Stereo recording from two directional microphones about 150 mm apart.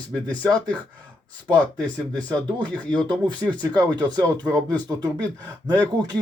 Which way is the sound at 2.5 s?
30° right (ahead or behind).